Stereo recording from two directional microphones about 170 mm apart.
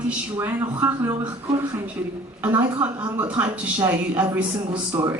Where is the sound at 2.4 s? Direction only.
15° right (ahead or behind).